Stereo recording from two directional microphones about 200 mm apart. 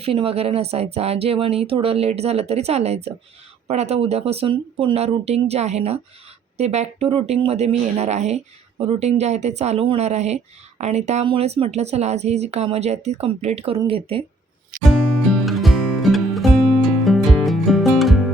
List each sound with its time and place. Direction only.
0.0 s speech: 30° right (ahead or behind)
14.8 s music: centre (ahead or behind)